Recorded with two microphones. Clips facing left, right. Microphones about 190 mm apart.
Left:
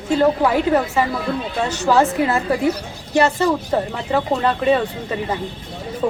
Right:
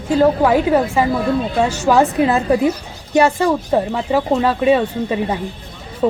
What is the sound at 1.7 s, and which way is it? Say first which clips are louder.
Speech: left 2 dB; 15° right (ahead or behind).